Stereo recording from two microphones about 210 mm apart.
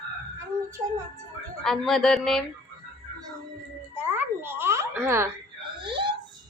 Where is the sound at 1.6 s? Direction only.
Centre (ahead or behind).